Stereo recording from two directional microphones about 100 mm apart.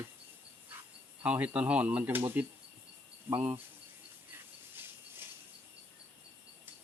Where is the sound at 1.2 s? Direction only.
15° right (ahead or behind).